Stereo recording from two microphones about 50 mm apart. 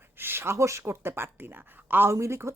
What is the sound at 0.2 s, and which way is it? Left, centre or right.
Speech, right.